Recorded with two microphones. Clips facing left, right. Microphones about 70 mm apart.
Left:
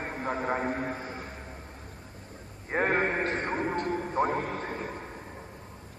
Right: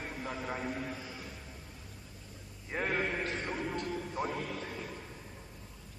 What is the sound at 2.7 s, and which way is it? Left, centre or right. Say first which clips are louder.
A man's voice: left 7 dB; left.